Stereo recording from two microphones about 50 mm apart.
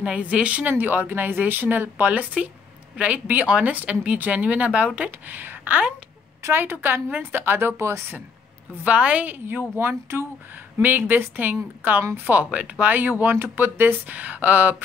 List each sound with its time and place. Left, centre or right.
0.0 s speech: right
0.7 s a woman's voice: right
6.5 s speech: right
8.8 s speech: right
9.3 s speech: right
9.8 s speech: right
10.8 s speech: right